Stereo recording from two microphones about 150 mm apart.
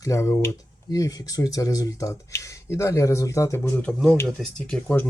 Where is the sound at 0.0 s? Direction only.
20° left (ahead or behind).